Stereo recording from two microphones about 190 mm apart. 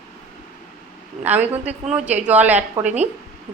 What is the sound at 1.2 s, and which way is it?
A woman's voice, 10° right (ahead or behind).